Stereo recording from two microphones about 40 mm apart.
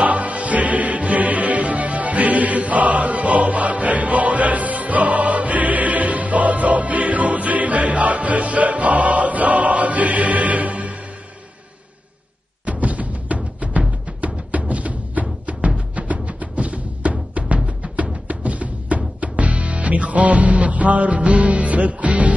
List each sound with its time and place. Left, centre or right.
0.0 s music: right
12.6 s music: right